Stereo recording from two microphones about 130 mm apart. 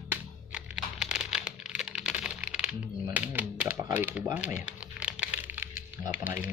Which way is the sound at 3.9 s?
10° right (ahead or behind).